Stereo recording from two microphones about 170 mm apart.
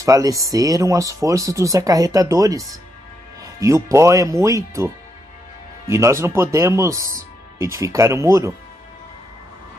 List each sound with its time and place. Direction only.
0.0 s speech: 20° right (ahead or behind)